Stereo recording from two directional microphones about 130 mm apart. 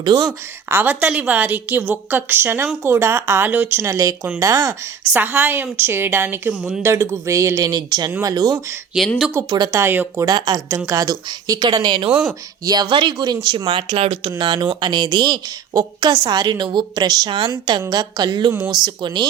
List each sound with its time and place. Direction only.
0.0 s a woman's voice: 30° right (ahead or behind)
5.1 s a woman's voice: 15° right (ahead or behind); by 8.6 s 30° right (ahead or behind)
9.0 s speech: centre (ahead or behind)
9.5 s a woman's voice: 30° right (ahead or behind)
9.8 s a woman's voice: 15° right (ahead or behind)
10.2 s a woman's voice: 30° right (ahead or behind)
13.9 s speech: 50° right (ahead or behind)
14.3 s a woman's voice: 35° right (ahead or behind)